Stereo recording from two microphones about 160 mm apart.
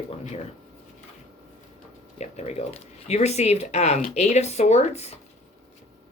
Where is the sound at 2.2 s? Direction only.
40° left (ahead or behind).